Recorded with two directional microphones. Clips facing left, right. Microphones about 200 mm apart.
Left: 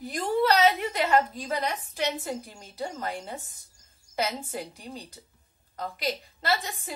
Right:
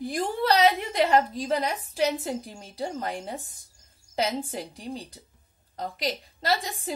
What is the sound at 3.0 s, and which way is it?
Speech, 15° right (ahead or behind).